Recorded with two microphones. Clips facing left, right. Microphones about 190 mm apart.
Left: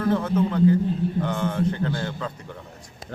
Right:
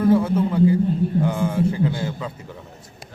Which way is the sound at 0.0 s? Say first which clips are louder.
Right 4 dB; 10° right (ahead or behind).